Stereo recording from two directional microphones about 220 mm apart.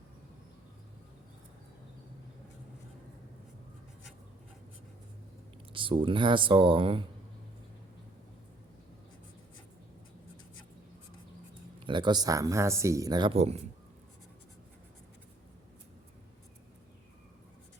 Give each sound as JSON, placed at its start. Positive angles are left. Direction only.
{"t": 5.7, "sound": "speech", "side_deg": -25}
{"t": 11.9, "sound": "speech", "side_deg": -20}